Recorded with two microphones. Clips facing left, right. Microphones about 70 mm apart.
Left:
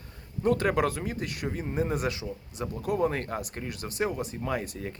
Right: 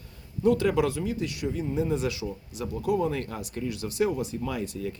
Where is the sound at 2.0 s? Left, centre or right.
Left.